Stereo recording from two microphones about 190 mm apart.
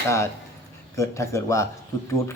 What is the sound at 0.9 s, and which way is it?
Speech, 15° left (ahead or behind).